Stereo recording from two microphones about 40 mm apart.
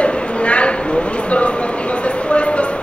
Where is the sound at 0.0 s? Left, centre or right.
Left.